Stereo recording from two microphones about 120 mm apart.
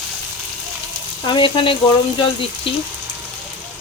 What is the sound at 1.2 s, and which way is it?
Speech, 45° left (ahead or behind).